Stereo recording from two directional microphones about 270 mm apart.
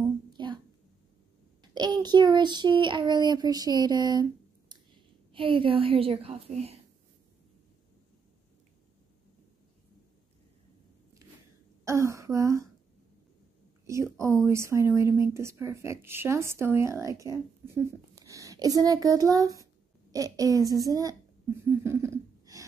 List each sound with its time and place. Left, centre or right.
0.0 s a sound: centre
1.6 s child singing: centre
5.3 s a woman's voice: centre
11.8 s child singing: centre
13.8 s a woman's voice: centre